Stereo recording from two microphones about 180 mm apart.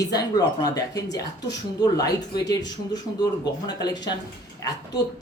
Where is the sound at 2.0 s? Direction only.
20° left (ahead or behind).